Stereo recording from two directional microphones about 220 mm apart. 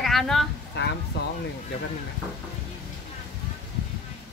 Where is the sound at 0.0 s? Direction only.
Centre (ahead or behind).